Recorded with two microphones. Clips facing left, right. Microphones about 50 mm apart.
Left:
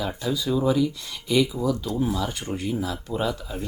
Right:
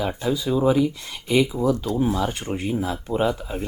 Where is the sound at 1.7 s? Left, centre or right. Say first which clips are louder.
Right 3 dB; right.